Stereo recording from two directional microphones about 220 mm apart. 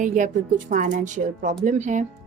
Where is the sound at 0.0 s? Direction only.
35° right (ahead or behind).